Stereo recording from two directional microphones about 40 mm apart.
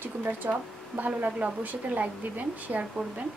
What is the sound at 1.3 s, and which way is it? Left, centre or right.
Speech, right.